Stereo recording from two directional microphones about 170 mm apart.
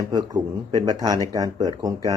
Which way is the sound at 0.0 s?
25° right (ahead or behind).